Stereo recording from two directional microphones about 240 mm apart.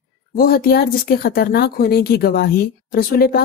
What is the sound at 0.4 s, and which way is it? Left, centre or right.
A woman's voice, left.